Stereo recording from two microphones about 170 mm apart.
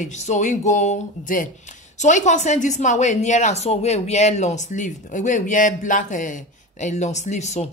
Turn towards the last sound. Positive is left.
turn(degrees=40)  # may be behind; listen again after turning